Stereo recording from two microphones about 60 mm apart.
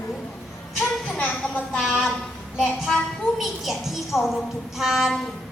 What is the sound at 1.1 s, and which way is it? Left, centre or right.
Speech, left.